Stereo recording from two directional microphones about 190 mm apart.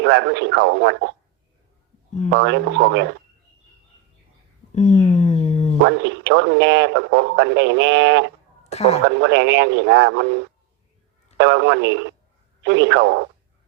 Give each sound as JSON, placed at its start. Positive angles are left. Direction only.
{"t": 0.0, "sound": "speech", "side_deg": -65}
{"t": 2.3, "sound": "speech", "side_deg": -65}
{"t": 4.7, "sound": "a sound", "side_deg": 35}
{"t": 5.8, "sound": "speech", "side_deg": -70}
{"t": 8.7, "sound": "speech", "side_deg": 35}
{"t": 9.0, "sound": "speech", "side_deg": -65}